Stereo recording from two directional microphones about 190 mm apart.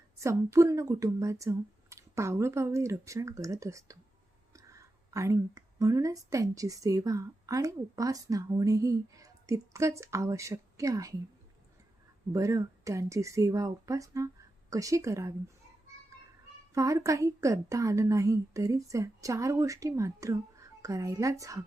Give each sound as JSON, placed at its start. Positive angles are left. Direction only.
{"t": 0.2, "sound": "a woman's voice", "side_deg": -15}
{"t": 12.3, "sound": "speech", "side_deg": -15}
{"t": 16.7, "sound": "speech", "side_deg": -15}